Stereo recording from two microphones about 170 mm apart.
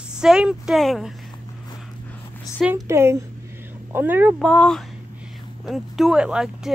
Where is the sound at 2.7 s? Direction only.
15° right (ahead or behind).